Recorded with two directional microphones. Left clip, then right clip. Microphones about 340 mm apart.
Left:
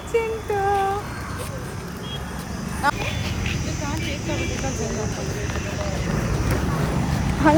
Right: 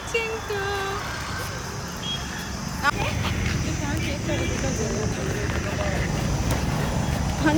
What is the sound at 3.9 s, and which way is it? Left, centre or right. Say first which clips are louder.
Vehicle: left 1 dB; centre.